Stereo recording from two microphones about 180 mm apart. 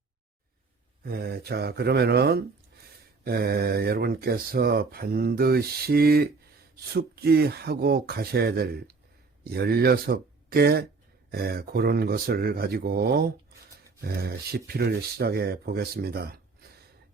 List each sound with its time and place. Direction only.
1.0 s speech: 60° right (ahead or behind)